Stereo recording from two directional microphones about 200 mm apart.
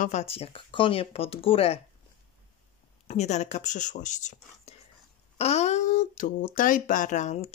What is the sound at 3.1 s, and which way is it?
Speech, 35° left (ahead or behind).